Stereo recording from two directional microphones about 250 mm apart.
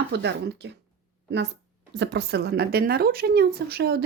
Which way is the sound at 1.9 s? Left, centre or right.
Right.